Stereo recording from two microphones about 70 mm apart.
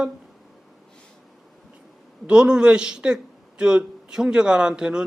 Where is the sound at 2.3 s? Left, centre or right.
Centre.